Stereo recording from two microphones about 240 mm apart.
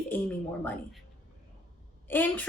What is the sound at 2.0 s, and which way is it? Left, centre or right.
Speech, centre.